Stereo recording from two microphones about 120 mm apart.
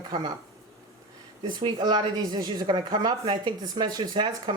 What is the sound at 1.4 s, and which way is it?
Speech, 40° right (ahead or behind).